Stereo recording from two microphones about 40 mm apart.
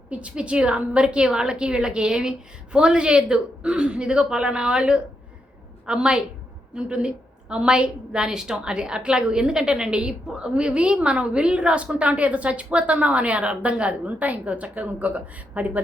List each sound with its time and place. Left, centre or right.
0.1 s a woman's voice: right